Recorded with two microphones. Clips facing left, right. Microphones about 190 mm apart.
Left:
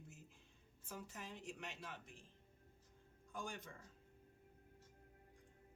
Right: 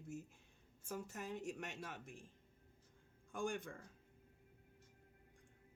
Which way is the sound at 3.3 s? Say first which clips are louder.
Right 7 dB; 55° right (ahead or behind).